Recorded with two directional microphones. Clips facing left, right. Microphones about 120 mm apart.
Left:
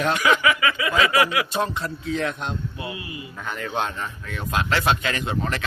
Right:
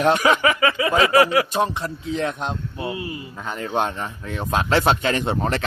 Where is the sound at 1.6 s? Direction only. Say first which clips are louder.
Right 2 dB; 20° right (ahead or behind).